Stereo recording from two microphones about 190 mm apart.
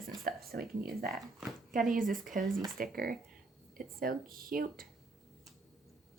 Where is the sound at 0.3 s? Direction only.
50° right (ahead or behind).